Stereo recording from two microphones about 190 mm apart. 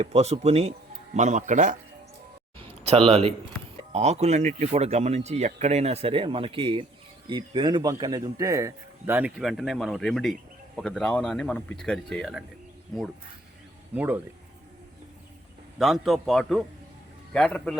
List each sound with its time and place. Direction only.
0.0 s speech: 35° right (ahead or behind)
2.6 s a sound: 30° right (ahead or behind)
3.1 s speech: 30° right (ahead or behind); by 12.5 s centre (ahead or behind)
13.9 s speech: 10° right (ahead or behind)
15.8 s speech: centre (ahead or behind)